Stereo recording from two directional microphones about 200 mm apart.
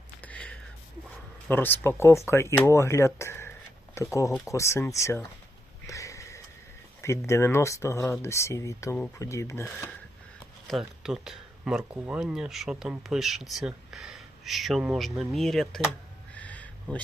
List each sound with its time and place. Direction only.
0.2 s a sound: 5° left (ahead or behind)
1.5 s speech: 10° left (ahead or behind)
5.8 s sniff: 15° left (ahead or behind)
7.0 s speech: 15° left (ahead or behind)
10.7 s speech: centre (ahead or behind)
16.3 s a sound: 5° left (ahead or behind)